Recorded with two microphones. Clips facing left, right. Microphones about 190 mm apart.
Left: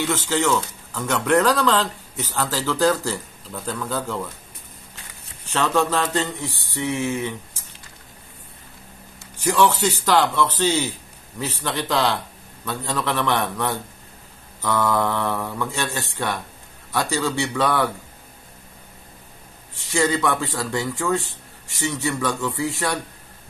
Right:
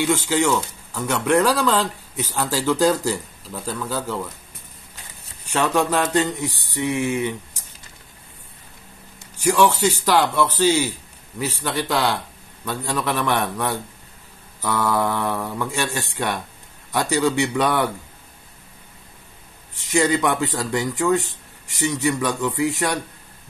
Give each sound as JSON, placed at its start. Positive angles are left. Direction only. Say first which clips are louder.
{"t": 0.0, "sound": "speech", "louder": "right 2 dB", "side_deg": -10}
{"t": 5.5, "sound": "speech", "louder": "right 1 dB", "side_deg": -15}
{"t": 9.4, "sound": "speech", "louder": "right 1 dB", "side_deg": -10}
{"t": 19.7, "sound": "speech", "louder": "right 2 dB", "side_deg": -15}